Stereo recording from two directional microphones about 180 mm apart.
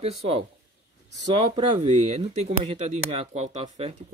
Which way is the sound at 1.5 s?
30° right (ahead or behind).